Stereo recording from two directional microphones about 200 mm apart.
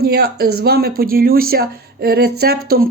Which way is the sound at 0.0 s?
50° right (ahead or behind).